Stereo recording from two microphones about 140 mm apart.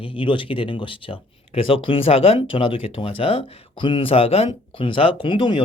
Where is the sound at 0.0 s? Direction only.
35° left (ahead or behind).